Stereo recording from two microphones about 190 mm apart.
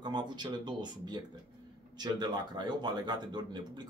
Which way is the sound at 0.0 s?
25° right (ahead or behind).